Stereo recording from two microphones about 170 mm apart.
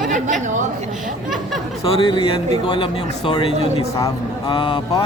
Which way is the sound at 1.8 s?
30° left (ahead or behind).